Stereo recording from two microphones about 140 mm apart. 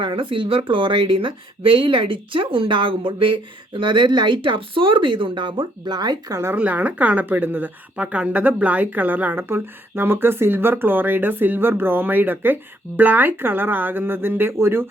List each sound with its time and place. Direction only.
0.0 s speech: 35° right (ahead or behind)
6.6 s a woman's voice: 10° right (ahead or behind)